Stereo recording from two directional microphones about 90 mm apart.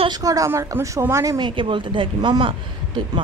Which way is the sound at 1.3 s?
60° right (ahead or behind).